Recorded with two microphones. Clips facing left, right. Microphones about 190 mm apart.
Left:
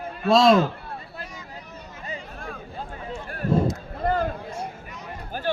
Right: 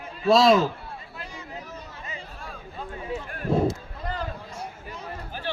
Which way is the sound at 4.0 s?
50° left (ahead or behind).